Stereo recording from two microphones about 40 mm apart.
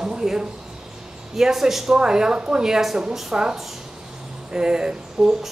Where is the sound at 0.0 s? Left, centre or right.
Centre.